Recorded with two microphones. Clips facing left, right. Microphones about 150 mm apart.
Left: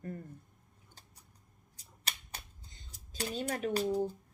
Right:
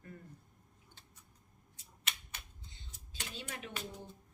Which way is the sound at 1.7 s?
35° left (ahead or behind).